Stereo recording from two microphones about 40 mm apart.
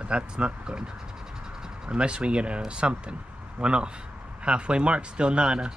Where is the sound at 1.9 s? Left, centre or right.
Right.